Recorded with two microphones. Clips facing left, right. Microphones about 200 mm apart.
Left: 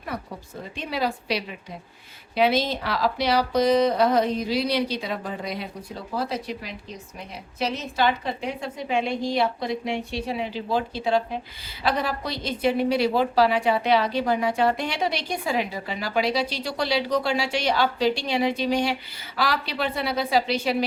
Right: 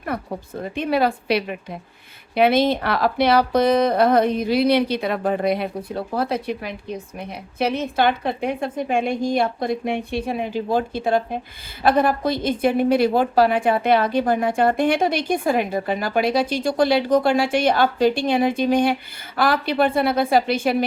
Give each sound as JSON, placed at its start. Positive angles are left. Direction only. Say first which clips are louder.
{"t": 0.1, "sound": "a woman's voice", "louder": "right 6 dB", "side_deg": -55}